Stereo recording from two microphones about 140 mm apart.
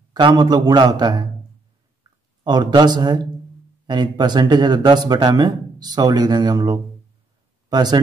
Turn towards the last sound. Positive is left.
turn(degrees=-30)  # may be behind; listen again after turning